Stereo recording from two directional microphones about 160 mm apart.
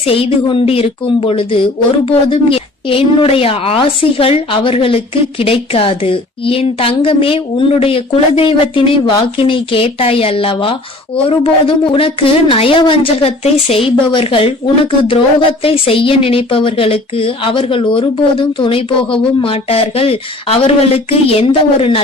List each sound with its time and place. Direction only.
0.0 s a woman's voice: 35° left (ahead or behind)